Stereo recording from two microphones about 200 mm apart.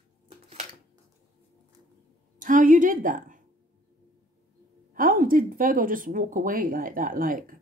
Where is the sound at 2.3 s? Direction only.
40° right (ahead or behind).